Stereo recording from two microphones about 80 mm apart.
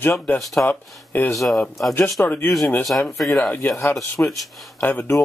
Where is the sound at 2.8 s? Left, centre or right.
Centre.